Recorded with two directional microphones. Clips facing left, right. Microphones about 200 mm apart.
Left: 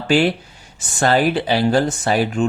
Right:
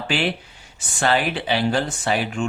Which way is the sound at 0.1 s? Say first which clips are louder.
Left 8 dB; 40° left (ahead or behind).